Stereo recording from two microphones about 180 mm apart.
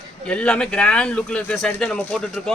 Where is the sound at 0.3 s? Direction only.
5° left (ahead or behind).